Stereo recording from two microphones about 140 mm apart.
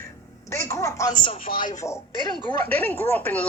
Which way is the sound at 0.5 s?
20° left (ahead or behind).